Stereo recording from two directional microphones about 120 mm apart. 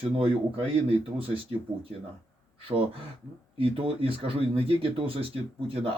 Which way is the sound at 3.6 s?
50° right (ahead or behind).